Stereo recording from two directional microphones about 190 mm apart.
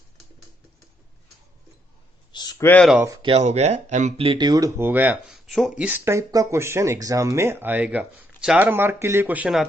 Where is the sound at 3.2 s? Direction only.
35° right (ahead or behind); by 5.7 s centre (ahead or behind).